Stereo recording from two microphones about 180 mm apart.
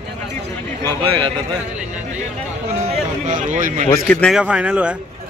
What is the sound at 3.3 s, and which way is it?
Speech, 45° right (ahead or behind).